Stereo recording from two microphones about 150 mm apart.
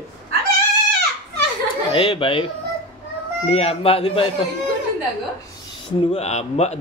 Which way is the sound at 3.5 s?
40° left (ahead or behind).